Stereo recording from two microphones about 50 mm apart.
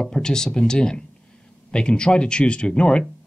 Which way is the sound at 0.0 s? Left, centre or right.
Centre.